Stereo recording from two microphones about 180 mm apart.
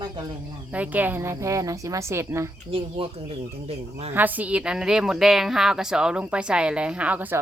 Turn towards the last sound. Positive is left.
turn(degrees=-10)  # may be behind; listen again after turning